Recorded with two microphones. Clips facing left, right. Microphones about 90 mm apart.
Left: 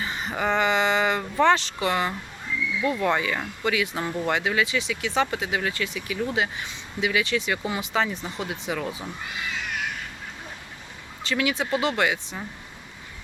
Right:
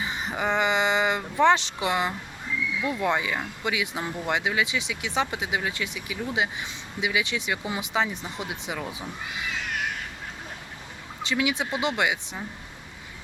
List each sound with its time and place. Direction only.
0.0 s speech: 15° right (ahead or behind)
11.2 s speech: 15° right (ahead or behind)